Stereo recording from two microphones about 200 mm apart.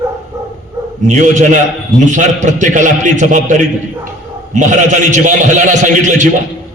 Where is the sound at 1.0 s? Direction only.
40° right (ahead or behind).